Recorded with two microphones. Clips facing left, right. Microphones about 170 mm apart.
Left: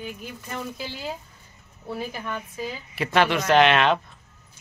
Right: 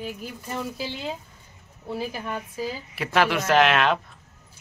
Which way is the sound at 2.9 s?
Centre (ahead or behind).